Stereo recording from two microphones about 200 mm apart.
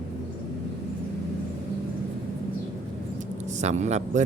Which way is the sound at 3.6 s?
35° right (ahead or behind).